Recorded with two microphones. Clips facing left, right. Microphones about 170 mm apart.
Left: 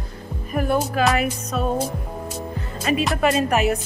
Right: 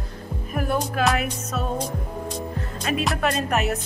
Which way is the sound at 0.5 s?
Centre (ahead or behind).